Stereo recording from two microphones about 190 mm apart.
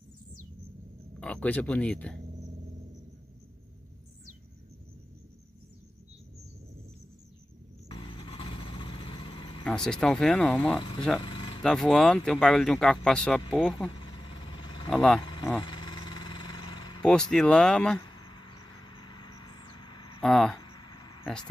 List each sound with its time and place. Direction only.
1.2 s speech: 5° left (ahead or behind)
7.9 s vehicle: 25° left (ahead or behind)
9.7 s speech: 5° left (ahead or behind)
10.8 s speech: 25° left (ahead or behind)
11.1 s a sound: 25° left (ahead or behind)
11.6 s speech: centre (ahead or behind)
13.9 s vehicle: 25° left (ahead or behind)
14.9 s speech: centre (ahead or behind)
15.2 s vehicle: 25° left (ahead or behind)
17.0 s speech: 5° left (ahead or behind)
18.0 s cricket: 25° left (ahead or behind)
20.2 s speech: centre (ahead or behind)
20.6 s a sound: 25° left (ahead or behind)